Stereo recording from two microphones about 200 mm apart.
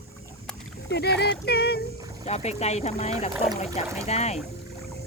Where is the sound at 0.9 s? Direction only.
55° left (ahead or behind).